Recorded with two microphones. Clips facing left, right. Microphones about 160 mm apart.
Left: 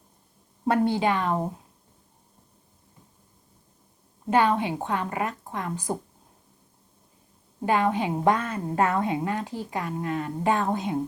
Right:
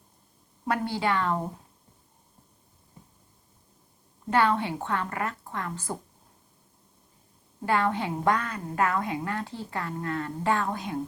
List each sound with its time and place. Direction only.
0.6 s a woman's voice: 25° left (ahead or behind)
4.3 s speech: 15° left (ahead or behind)
7.6 s a woman's voice: 15° left (ahead or behind)